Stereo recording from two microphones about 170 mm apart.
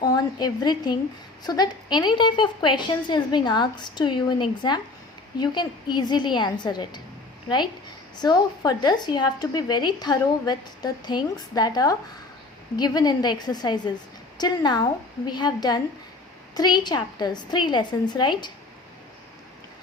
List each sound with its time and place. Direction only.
0.0 s a sound: 25° left (ahead or behind)
1.5 s a woman's voice: 25° left (ahead or behind)
8.2 s a woman's voice: 25° left (ahead or behind)